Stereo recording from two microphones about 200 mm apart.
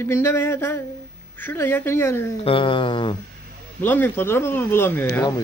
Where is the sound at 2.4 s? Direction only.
25° left (ahead or behind).